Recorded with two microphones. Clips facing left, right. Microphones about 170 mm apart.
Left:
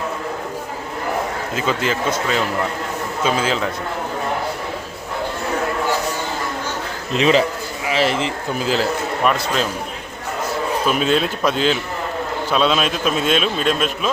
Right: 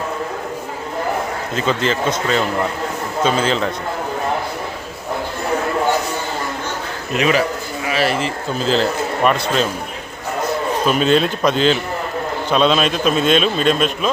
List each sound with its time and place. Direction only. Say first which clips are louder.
1.5 s a man's voice: right 2 dB; 10° left (ahead or behind)
7.1 s a man's voice: left 1 dB; 25° left (ahead or behind); by 9.6 s 5° left (ahead or behind)
10.8 s a man's voice: right 4 dB; 5° left (ahead or behind)